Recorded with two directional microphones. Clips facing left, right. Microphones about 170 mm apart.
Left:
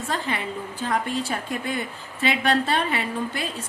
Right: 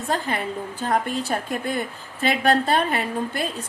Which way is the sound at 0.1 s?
50° right (ahead or behind).